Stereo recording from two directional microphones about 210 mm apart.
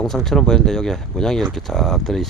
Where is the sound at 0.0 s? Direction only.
Centre (ahead or behind).